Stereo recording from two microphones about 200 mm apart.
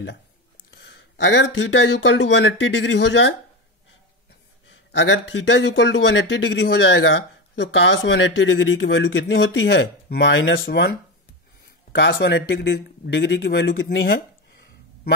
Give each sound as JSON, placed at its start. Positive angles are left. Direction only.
{"t": 0.7, "sound": "speech", "side_deg": 60}
{"t": 4.9, "sound": "speech", "side_deg": 65}